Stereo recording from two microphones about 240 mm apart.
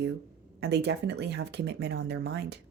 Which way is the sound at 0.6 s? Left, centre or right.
Right.